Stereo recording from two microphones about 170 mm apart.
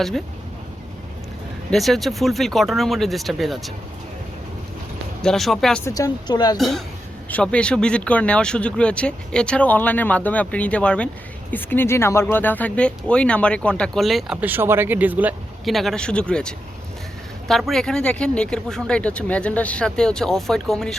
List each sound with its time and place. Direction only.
1.7 s speech: centre (ahead or behind)
5.2 s speech: centre (ahead or behind)
5.8 s speech: 20° left (ahead or behind)
6.6 s speech: centre (ahead or behind)